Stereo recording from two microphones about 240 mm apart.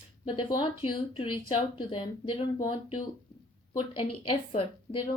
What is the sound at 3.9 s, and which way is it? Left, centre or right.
Speech, left.